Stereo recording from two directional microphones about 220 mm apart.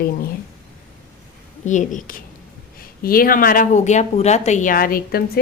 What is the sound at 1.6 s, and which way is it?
Speech, 35° left (ahead or behind).